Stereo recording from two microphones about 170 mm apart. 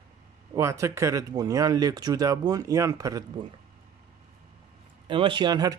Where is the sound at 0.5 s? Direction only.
20° right (ahead or behind).